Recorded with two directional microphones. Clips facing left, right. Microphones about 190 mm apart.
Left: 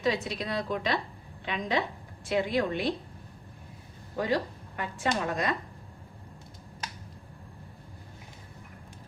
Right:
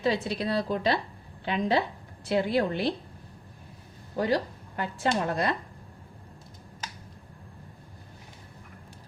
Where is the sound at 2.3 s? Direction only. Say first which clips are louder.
Right 2 dB; 35° right (ahead or behind).